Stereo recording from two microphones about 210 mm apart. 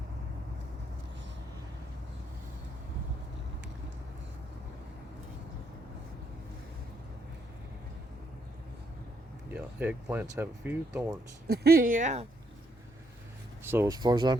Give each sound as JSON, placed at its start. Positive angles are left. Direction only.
{"t": 9.5, "sound": "speech", "side_deg": -10}
{"t": 11.4, "sound": "speech", "side_deg": -50}
{"t": 13.7, "sound": "speech", "side_deg": -15}